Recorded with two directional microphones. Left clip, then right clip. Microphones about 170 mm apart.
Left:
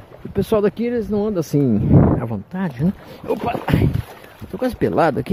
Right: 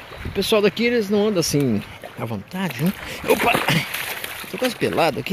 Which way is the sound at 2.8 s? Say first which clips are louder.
Right 1 dB; 10° right (ahead or behind).